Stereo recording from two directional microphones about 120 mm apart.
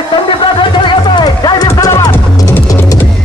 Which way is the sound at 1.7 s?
30° left (ahead or behind).